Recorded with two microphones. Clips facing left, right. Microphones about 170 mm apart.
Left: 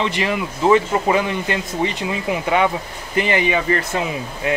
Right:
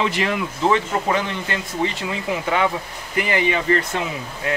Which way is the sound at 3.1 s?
25° left (ahead or behind).